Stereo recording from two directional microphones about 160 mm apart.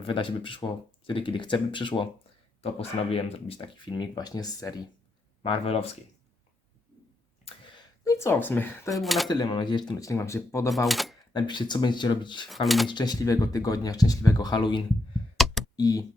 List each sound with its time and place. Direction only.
0.0 s speech: 30° left (ahead or behind)
5.4 s speech: 35° left (ahead or behind)
7.4 s a sound: 30° left (ahead or behind); by 8.9 s 10° left (ahead or behind)
8.9 s speech: centre (ahead or behind)
9.3 s speech: 30° left (ahead or behind)
10.8 s speech: centre (ahead or behind)
11.3 s speech: 30° left (ahead or behind)
12.5 s speech: centre (ahead or behind)
12.9 s speech: 25° left (ahead or behind)
15.4 s computer keyboard: centre (ahead or behind)
15.7 s speech: 20° left (ahead or behind)